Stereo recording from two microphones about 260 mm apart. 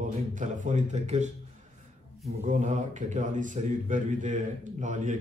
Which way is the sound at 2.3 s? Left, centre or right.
Right.